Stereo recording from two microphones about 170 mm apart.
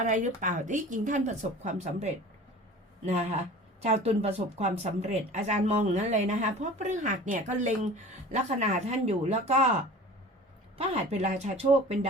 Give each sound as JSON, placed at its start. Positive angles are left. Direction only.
{"t": 0.0, "sound": "speech", "side_deg": -45}
{"t": 10.8, "sound": "speech", "side_deg": -40}